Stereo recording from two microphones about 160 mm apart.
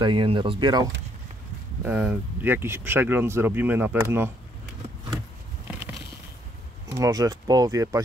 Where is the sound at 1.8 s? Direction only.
10° right (ahead or behind).